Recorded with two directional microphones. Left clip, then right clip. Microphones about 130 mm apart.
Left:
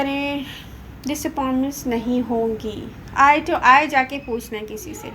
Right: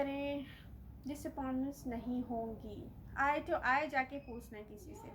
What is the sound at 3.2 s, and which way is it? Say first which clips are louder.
A woman's voice: left 19 dB; 15° left (ahead or behind).